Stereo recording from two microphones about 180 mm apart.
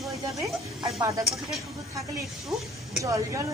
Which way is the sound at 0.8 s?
30° right (ahead or behind).